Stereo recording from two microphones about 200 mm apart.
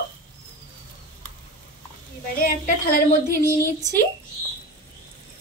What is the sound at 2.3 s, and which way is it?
Speech, 45° left (ahead or behind).